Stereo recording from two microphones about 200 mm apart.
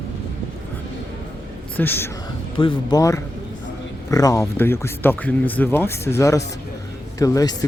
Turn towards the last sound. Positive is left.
turn(degrees=20)  # may be behind; listen again after turning